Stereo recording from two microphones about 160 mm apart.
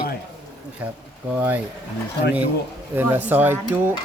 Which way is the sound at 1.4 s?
10° right (ahead or behind).